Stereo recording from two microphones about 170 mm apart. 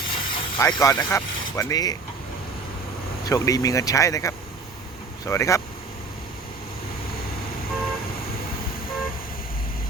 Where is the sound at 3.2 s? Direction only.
20° left (ahead or behind).